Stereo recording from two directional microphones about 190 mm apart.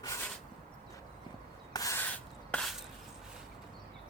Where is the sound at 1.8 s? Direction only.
15° left (ahead or behind).